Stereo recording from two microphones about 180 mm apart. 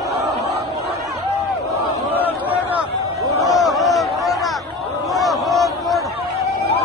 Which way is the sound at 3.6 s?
Centre (ahead or behind).